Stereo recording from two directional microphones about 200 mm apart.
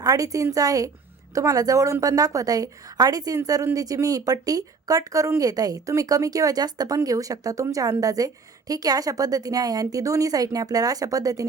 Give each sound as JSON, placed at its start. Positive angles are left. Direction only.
{"t": 0.0, "sound": "a woman's voice", "side_deg": -15}